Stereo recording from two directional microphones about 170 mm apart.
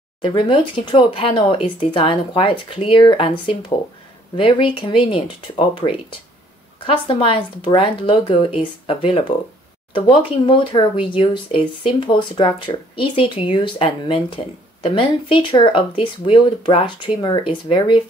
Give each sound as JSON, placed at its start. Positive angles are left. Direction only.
{"t": 0.2, "sound": "speech", "side_deg": 30}